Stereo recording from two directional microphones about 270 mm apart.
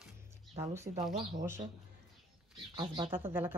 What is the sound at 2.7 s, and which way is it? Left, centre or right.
Speech, centre.